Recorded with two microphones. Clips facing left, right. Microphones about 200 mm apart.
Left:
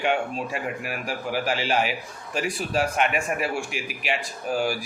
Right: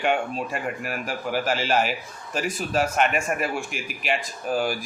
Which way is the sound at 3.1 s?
45° right (ahead or behind).